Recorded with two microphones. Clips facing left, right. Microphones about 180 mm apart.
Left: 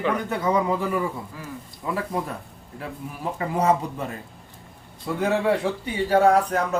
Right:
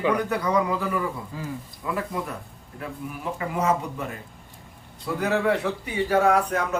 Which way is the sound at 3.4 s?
35° left (ahead or behind).